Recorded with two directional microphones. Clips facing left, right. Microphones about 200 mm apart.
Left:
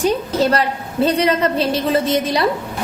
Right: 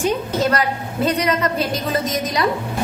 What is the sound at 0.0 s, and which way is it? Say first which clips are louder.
A woman's voice: left 2 dB; 30° left (ahead or behind).